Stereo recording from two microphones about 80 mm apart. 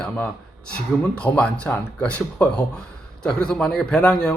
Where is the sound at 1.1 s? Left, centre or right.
Centre.